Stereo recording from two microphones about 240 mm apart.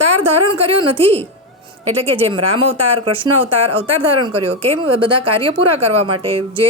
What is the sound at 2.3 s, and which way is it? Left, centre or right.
Speech, right.